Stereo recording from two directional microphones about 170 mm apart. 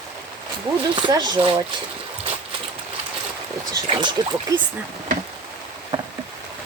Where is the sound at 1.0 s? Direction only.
25° right (ahead or behind).